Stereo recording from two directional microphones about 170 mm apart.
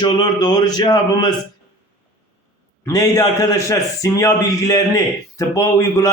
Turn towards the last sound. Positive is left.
turn(degrees=15)  # may be behind; listen again after turning